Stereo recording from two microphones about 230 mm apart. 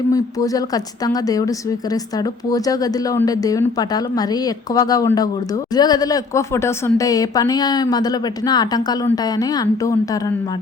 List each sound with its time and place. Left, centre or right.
0.1 s a woman's voice: centre